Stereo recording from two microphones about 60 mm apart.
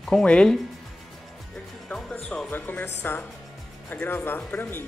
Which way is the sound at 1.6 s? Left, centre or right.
Centre.